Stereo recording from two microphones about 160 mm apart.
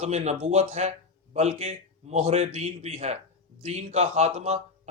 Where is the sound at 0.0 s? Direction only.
45° right (ahead or behind).